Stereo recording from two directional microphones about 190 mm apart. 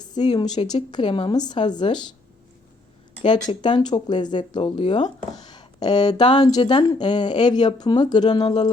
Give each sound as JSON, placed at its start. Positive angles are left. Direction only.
{"t": 0.0, "sound": "a woman's voice", "side_deg": 20}
{"t": 3.2, "sound": "speech", "side_deg": 25}